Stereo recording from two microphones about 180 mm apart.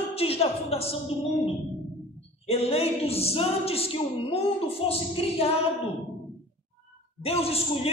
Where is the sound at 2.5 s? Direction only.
35° left (ahead or behind).